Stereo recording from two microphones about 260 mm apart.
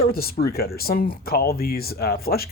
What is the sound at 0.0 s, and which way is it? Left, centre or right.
Speech, left.